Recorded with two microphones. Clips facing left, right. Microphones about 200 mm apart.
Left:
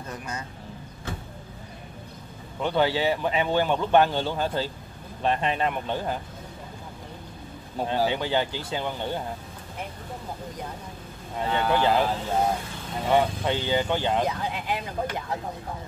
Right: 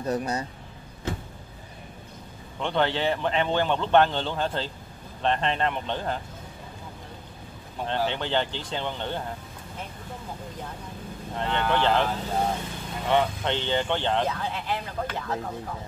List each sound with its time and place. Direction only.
0.0 s speech: 35° right (ahead or behind)
2.6 s speech: 5° left (ahead or behind)
7.8 s speech: 10° left (ahead or behind)
11.3 s speech: 10° left (ahead or behind)
13.1 s speech: 10° left (ahead or behind)